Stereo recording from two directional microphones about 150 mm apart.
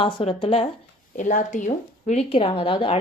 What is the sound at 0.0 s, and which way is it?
Speech, 35° left (ahead or behind).